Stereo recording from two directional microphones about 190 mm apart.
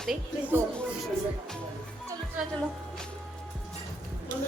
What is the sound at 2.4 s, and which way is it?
Speech, 5° right (ahead or behind).